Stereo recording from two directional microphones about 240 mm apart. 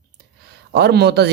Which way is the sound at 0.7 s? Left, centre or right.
Right.